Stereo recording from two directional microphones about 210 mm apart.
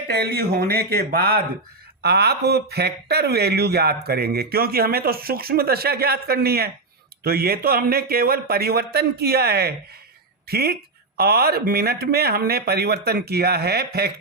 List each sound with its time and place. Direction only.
0.1 s speech: 50° right (ahead or behind)